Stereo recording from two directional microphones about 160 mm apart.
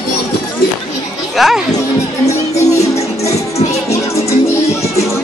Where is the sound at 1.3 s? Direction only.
Centre (ahead or behind).